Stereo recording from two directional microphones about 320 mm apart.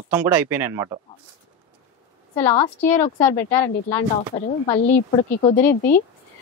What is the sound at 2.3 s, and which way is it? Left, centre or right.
Speech, centre.